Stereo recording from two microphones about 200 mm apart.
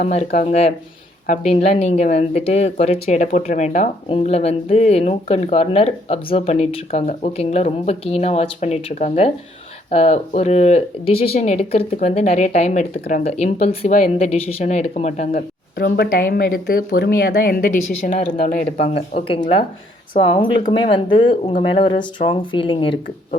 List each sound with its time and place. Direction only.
0.0 s speech: 35° left (ahead or behind)
15.7 s speech: 50° left (ahead or behind)
18.8 s speech: 30° left (ahead or behind)